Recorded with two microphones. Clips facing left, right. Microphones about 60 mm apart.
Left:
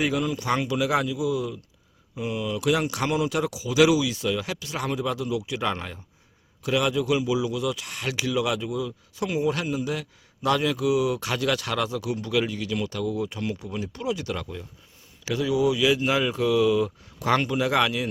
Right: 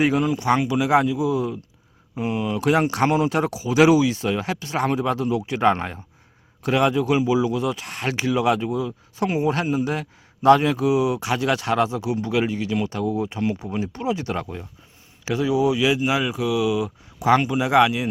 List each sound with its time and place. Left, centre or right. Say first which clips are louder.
0.0 s a man's voice: right 5 dB; right
16.0 s speech: right 1 dB; centre